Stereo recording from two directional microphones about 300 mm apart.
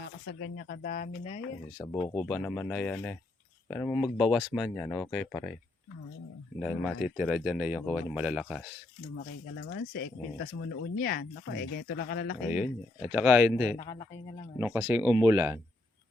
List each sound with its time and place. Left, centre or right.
0.0 s speech: left
1.8 s speech: centre
6.6 s speech: centre
9.9 s speech: left
12.4 s speech: centre
13.7 s speech: centre
14.6 s speech: centre